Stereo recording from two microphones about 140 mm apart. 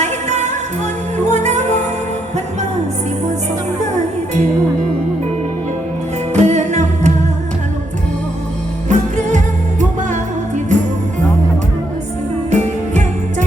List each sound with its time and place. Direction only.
0.0 s music: 55° right (ahead or behind)
6.3 s music: 55° right (ahead or behind)
8.9 s music: 60° right (ahead or behind)
12.5 s music: 55° right (ahead or behind)